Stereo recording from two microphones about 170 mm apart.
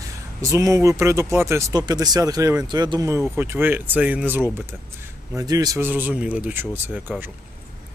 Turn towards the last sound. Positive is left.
turn(degrees=-10)  # may be behind; listen again after turning